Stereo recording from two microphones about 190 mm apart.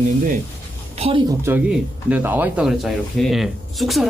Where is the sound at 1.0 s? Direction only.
25° right (ahead or behind).